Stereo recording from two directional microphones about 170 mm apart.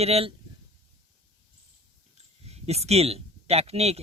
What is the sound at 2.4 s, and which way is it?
Speech, 40° right (ahead or behind).